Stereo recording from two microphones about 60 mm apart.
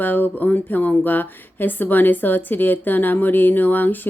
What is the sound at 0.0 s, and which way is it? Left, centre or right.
Speech, left.